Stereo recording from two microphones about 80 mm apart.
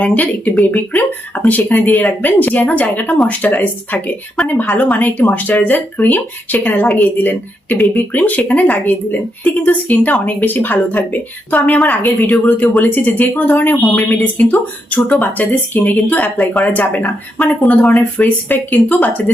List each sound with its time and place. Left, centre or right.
0.0 s a woman's voice: centre